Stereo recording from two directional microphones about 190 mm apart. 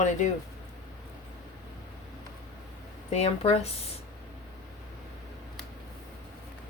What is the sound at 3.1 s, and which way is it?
Speech, 35° left (ahead or behind).